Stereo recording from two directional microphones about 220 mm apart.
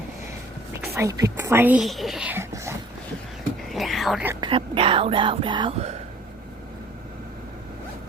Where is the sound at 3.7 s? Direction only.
Centre (ahead or behind).